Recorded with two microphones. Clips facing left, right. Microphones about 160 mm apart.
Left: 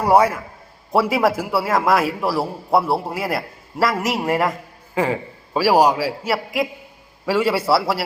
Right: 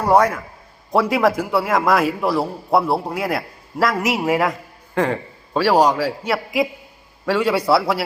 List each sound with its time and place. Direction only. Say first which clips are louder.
0.0 s a man's voice: even; 10° left (ahead or behind)